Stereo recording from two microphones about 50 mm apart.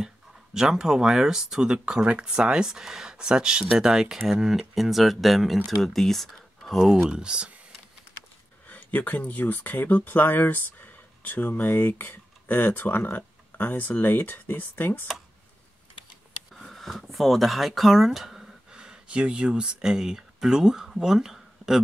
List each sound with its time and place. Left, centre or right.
0.6 s speech: centre
7.1 s speech: centre
8.6 s speech: left
16.5 s speech: centre
18.7 s speech: centre